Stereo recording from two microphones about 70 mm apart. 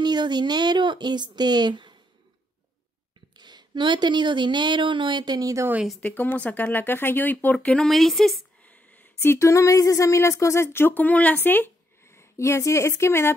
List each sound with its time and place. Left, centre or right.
0.0 s speech: right
3.3 s speech: right
6.0 s speech: left
7.5 s speech: centre
8.6 s a sound: left
9.2 s speech: left